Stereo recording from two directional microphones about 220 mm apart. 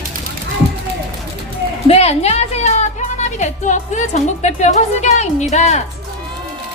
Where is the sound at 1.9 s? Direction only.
30° left (ahead or behind).